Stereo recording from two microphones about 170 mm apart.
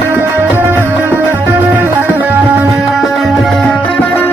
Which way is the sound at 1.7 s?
10° right (ahead or behind).